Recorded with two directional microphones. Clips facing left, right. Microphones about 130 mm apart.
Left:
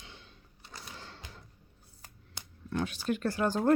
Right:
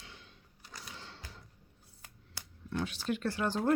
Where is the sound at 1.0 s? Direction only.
50° left (ahead or behind).